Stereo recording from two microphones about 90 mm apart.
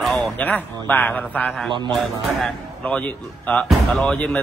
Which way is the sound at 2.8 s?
15° left (ahead or behind).